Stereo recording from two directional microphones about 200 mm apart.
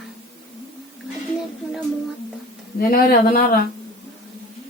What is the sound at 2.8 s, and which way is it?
Speech, 45° left (ahead or behind).